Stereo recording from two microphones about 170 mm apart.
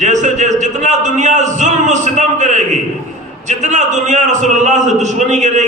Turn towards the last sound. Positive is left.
turn(degrees=-45)  # may be behind; listen again after turning